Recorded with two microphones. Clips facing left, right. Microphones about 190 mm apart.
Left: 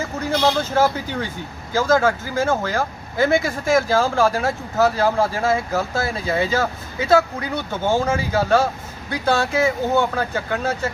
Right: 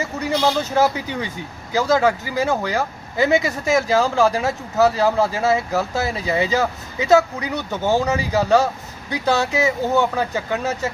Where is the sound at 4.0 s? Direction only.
Centre (ahead or behind).